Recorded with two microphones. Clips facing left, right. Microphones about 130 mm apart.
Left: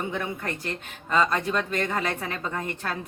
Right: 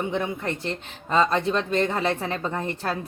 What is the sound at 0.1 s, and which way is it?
A woman's voice, 25° right (ahead or behind).